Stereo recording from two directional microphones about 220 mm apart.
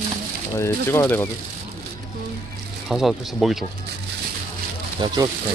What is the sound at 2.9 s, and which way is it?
Speech, centre (ahead or behind).